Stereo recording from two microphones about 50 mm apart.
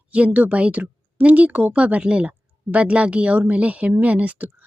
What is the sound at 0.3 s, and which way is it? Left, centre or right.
Speech, right.